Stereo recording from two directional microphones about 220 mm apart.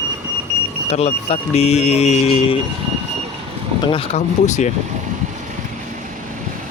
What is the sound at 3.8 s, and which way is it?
Speech, 25° left (ahead or behind).